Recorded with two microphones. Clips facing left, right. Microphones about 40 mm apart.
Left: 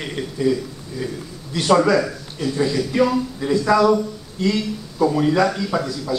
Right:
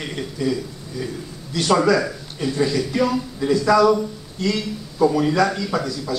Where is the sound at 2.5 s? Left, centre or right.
Centre.